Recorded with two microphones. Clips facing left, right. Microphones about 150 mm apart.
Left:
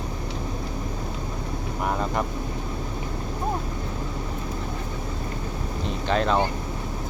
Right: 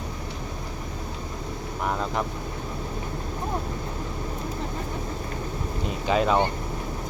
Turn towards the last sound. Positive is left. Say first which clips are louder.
# right 1 dB
turn(degrees=-5)  # may be behind; listen again after turning